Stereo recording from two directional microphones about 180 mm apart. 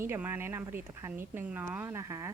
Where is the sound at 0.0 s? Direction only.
15° right (ahead or behind).